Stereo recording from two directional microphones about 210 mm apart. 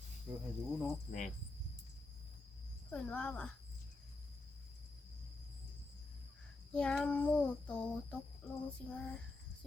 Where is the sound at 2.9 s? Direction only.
5° left (ahead or behind).